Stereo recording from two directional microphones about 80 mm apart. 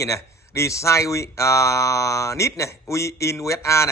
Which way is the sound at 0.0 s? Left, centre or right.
Left.